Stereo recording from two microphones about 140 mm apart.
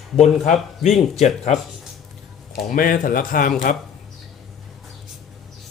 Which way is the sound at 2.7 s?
80° left.